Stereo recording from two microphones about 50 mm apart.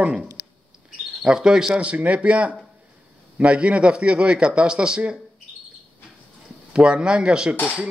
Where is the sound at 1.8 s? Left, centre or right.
Right.